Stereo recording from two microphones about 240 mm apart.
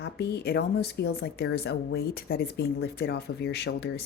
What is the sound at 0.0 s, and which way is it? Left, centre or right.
A woman's voice, left.